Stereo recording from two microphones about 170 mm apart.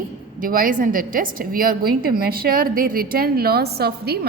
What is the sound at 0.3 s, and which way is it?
A woman's voice, 55° right (ahead or behind).